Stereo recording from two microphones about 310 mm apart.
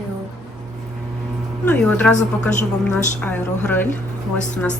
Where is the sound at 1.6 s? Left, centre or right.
Centre.